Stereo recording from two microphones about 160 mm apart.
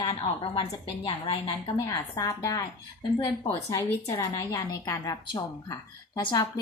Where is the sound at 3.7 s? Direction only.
20° left (ahead or behind).